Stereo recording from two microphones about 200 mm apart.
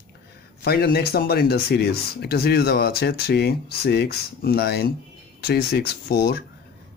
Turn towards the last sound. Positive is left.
turn(degrees=50)  # may be behind; listen again after turning